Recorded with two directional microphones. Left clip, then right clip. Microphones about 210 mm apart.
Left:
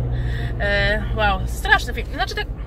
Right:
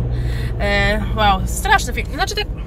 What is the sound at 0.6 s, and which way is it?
Speech, 20° right (ahead or behind).